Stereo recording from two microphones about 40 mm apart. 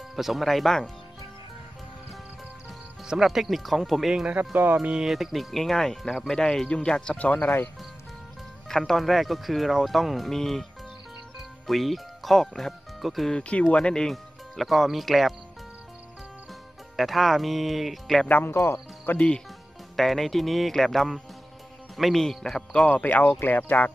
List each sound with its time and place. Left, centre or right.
0.1 s speech: centre
3.2 s speech: centre
4.4 s speech: right
5.0 s speech: centre; by 7.2 s left
8.6 s speech: centre
13.4 s speech: left
14.1 s speech: centre
16.9 s speech: centre
18.3 s speech: left
19.1 s speech: left
20.0 s speech: centre
22.8 s speech: left